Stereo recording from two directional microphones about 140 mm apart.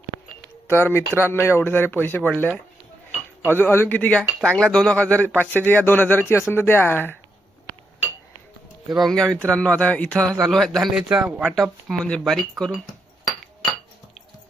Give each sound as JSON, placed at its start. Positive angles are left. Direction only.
{"t": 0.7, "sound": "speech", "side_deg": 15}
{"t": 8.9, "sound": "speech", "side_deg": 0}